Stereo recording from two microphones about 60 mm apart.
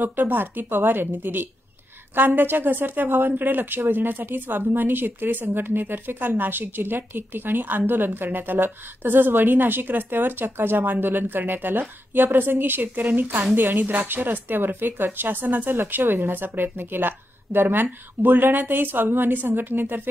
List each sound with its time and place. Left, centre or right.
0.0 s speech: right